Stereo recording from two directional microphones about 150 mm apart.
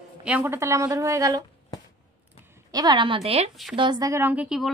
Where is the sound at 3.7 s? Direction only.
30° right (ahead or behind).